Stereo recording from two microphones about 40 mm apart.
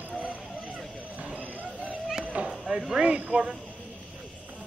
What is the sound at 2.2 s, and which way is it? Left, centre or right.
Children playing, right.